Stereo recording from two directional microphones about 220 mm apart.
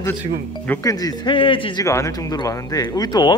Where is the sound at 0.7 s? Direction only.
15° left (ahead or behind).